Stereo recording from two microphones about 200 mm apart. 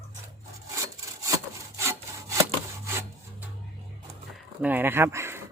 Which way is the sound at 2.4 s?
15° right (ahead or behind).